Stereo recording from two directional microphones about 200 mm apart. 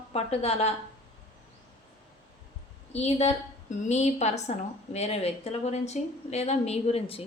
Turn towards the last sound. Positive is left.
turn(degrees=30)  # may be behind; listen again after turning